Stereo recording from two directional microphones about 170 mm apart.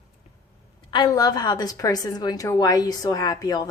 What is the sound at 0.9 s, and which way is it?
A woman's voice, 25° left (ahead or behind).